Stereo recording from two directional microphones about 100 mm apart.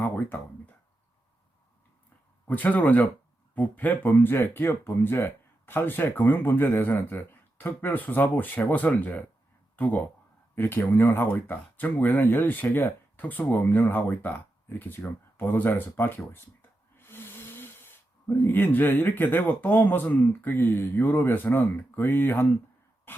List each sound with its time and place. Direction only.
2.5 s speech: 15° left (ahead or behind)
23.1 s throat clearing: 20° left (ahead or behind)